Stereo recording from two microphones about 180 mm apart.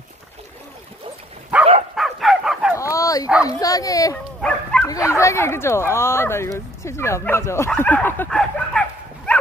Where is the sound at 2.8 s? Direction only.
20° left (ahead or behind).